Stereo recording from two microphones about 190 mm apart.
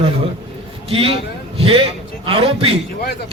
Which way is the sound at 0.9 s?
30° right (ahead or behind).